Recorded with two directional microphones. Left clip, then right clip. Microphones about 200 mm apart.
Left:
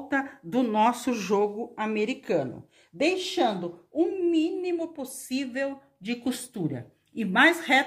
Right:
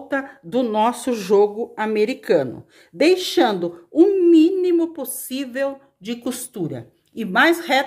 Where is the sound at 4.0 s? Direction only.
50° right (ahead or behind).